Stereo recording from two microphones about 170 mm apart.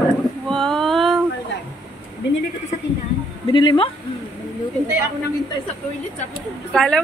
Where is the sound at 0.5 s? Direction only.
5° left (ahead or behind).